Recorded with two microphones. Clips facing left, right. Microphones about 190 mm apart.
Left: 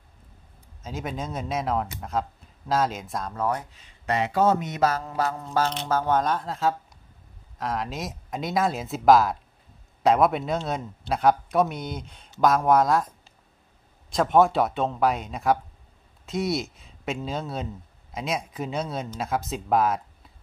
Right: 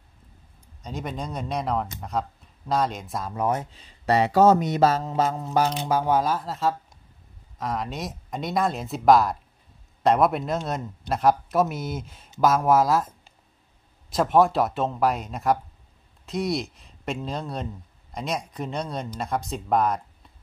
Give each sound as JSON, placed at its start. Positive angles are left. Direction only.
{"t": 0.8, "sound": "speech", "side_deg": 0}
{"t": 3.3, "sound": "speech", "side_deg": -20}
{"t": 14.1, "sound": "speech", "side_deg": 0}